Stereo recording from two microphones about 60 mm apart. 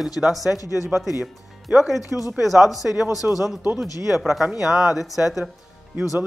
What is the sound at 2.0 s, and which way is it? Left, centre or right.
Speech, left.